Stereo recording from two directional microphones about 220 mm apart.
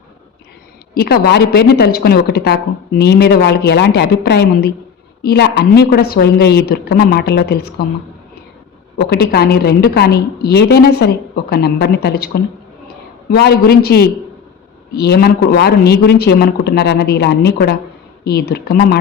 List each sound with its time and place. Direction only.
0.9 s speech: 45° left (ahead or behind)
9.0 s speech: 45° left (ahead or behind)